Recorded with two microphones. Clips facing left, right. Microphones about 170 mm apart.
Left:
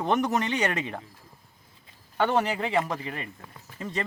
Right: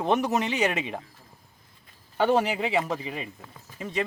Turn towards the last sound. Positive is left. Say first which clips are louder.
# right 1 dB
turn(degrees=0)  # may be behind; listen again after turning